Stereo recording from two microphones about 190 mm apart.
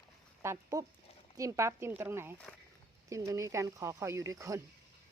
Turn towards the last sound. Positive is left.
turn(degrees=-15)  # may be behind; listen again after turning